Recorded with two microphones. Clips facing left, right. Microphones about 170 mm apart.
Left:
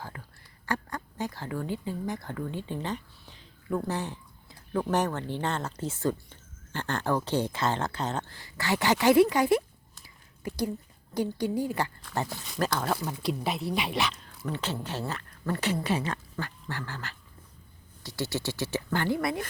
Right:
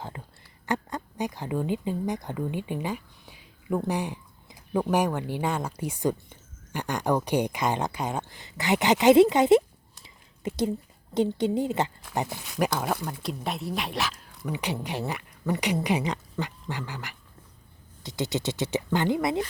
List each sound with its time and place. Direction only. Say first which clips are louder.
0.0 s a sound: right 3 dB; 20° right (ahead or behind)
3.8 s speech: right 3 dB; 15° right (ahead or behind)
12.9 s speech: left 1 dB; centre (ahead or behind); by 19.5 s 20° right (ahead or behind)